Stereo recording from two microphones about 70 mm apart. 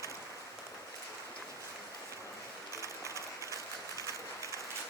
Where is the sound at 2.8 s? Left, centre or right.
Right.